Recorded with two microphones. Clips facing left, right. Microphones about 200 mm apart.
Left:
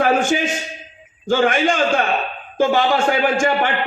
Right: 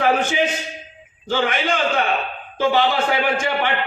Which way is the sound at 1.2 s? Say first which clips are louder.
Left 5 dB; 45° left (ahead or behind).